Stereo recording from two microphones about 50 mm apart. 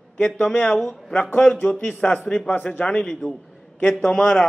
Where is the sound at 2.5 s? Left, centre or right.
Left.